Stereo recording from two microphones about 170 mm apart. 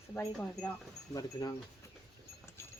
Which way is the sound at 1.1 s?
20° left (ahead or behind).